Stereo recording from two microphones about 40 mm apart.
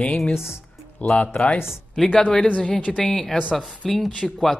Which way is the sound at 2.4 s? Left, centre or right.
Left.